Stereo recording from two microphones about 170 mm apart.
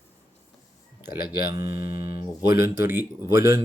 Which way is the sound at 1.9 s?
65° left (ahead or behind).